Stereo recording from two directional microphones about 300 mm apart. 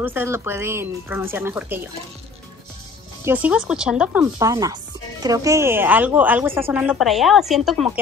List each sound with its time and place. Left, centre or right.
0.0 s speech: centre
3.3 s speech: centre